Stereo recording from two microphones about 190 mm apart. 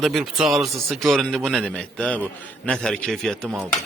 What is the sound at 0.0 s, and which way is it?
A man's voice, centre (ahead or behind).